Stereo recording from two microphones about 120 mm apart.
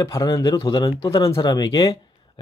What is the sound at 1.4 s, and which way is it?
Speech, 35° left (ahead or behind).